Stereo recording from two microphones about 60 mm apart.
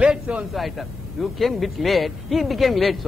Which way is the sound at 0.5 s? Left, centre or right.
Centre.